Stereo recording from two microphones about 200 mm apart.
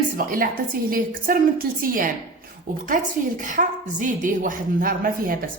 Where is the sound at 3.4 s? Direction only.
40° right (ahead or behind).